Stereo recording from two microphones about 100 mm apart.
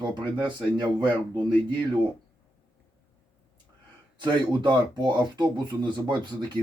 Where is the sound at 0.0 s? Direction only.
45° right (ahead or behind).